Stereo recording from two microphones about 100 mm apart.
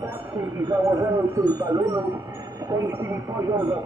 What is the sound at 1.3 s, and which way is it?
Speech, 40° right (ahead or behind).